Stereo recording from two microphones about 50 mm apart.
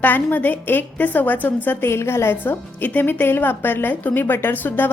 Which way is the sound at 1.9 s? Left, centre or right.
Left.